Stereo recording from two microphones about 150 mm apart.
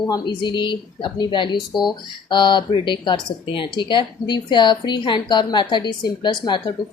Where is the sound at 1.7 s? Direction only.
Centre (ahead or behind).